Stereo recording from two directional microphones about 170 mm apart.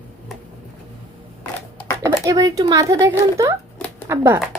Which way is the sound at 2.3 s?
20° right (ahead or behind).